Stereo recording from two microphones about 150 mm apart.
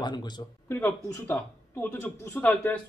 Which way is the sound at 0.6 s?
15° left (ahead or behind).